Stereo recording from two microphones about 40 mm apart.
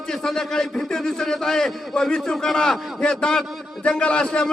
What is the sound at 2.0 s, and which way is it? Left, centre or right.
A man's voice, left.